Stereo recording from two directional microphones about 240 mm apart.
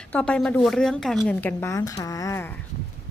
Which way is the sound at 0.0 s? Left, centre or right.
Centre.